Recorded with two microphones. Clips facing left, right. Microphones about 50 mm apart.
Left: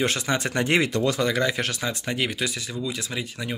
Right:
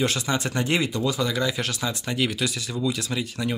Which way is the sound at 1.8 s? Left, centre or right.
Left.